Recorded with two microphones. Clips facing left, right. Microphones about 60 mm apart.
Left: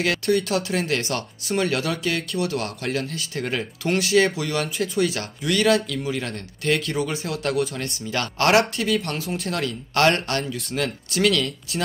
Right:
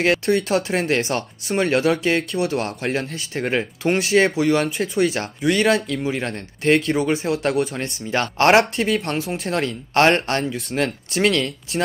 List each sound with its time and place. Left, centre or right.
0.0 s speech: right